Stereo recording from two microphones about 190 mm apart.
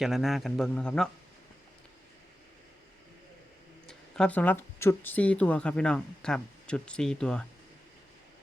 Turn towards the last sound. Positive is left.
turn(degrees=5)  # may be behind; listen again after turning